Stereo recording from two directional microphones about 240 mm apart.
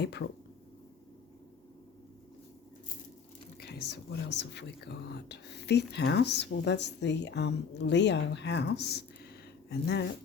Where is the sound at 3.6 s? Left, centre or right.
Left.